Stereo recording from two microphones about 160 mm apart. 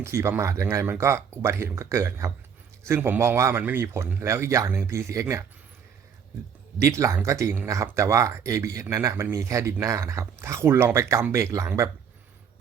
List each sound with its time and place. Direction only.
0.0 s speech: 15° right (ahead or behind)
6.7 s speech: 20° right (ahead or behind)